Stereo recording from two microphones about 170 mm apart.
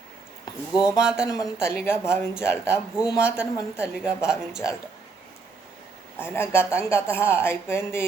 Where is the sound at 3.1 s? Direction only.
5° right (ahead or behind).